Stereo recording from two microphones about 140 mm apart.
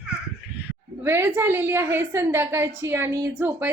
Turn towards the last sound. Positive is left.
turn(degrees=-15)  # may be behind; listen again after turning